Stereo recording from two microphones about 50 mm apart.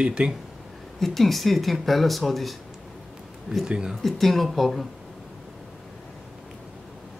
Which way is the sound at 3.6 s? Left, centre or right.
Centre.